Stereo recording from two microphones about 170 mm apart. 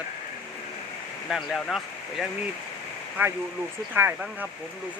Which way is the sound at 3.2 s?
10° right (ahead or behind).